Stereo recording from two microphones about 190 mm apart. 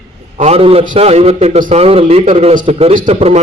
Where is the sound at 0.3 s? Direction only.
35° right (ahead or behind).